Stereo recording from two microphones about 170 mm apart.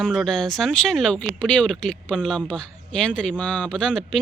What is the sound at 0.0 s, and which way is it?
Speech, centre (ahead or behind).